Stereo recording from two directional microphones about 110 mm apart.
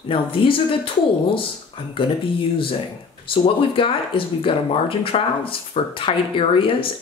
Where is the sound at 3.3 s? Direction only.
50° left (ahead or behind).